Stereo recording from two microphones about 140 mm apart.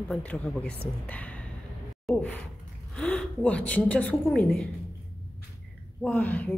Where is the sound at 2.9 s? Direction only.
5° left (ahead or behind).